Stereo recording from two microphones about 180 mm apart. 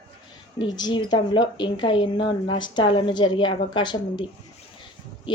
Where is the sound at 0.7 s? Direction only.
25° left (ahead or behind).